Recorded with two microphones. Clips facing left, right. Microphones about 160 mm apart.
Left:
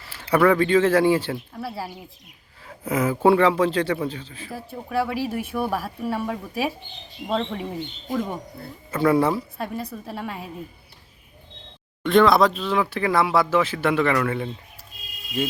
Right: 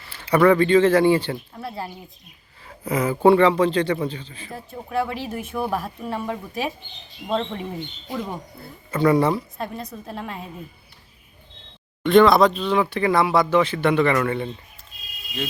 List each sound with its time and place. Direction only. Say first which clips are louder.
0.5 s a man's voice: right 2 dB; 5° left (ahead or behind)
8.1 s speech: left 4 dB; 45° left (ahead or behind)
8.9 s a man's voice: right 1 dB; 5° left (ahead or behind)
12.0 s a man's voice: right 2 dB; centre (ahead or behind)